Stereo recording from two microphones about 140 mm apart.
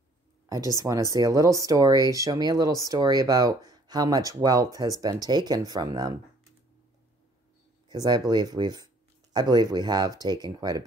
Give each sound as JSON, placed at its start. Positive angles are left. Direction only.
{"t": 0.5, "sound": "speech", "side_deg": -25}
{"t": 7.9, "sound": "speech", "side_deg": -30}